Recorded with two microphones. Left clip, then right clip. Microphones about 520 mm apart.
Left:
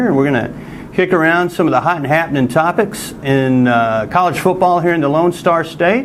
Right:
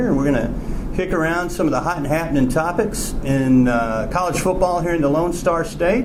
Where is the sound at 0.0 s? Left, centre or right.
Left.